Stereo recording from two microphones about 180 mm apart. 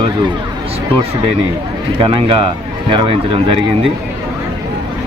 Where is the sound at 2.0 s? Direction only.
30° right (ahead or behind).